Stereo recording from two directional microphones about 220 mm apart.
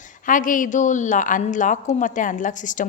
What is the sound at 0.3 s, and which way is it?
A woman's voice, 35° left (ahead or behind).